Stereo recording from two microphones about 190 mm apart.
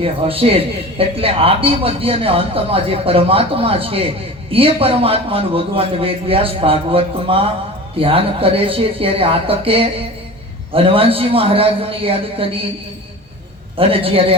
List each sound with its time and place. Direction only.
0.0 s a man's voice: 30° right (ahead or behind)
13.7 s a man's voice: 30° right (ahead or behind)